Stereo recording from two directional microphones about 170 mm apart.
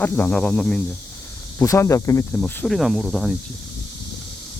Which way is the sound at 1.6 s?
20° left (ahead or behind).